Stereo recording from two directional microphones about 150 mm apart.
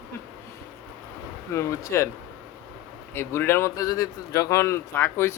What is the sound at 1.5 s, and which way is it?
Speech, 20° left (ahead or behind).